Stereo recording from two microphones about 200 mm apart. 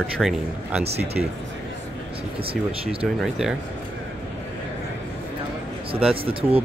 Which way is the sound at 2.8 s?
Centre (ahead or behind).